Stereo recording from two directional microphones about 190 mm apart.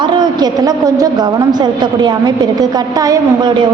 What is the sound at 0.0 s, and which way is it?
A woman's voice, 25° right (ahead or behind).